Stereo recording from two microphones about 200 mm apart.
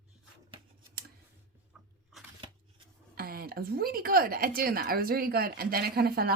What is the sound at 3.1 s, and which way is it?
A woman's voice, 50° right (ahead or behind).